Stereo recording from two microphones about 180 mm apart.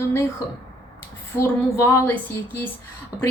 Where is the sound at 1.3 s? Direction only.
15° left (ahead or behind).